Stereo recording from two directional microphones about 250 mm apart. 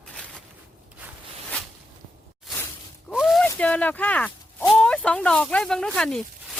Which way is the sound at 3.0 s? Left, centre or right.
Centre.